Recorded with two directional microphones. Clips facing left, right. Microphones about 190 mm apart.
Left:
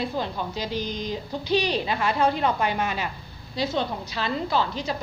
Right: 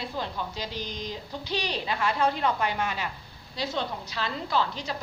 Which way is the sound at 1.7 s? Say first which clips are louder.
Left 4 dB; 20° left (ahead or behind).